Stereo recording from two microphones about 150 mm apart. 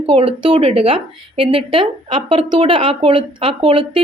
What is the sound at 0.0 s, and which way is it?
Speech, 40° right (ahead or behind).